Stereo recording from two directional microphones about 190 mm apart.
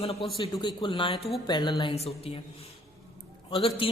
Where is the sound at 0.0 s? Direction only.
30° left (ahead or behind).